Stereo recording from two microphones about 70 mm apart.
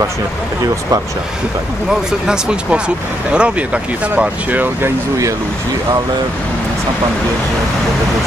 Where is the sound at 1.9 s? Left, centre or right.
Centre.